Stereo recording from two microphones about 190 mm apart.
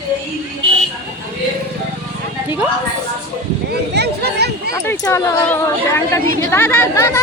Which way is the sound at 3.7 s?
60° right (ahead or behind).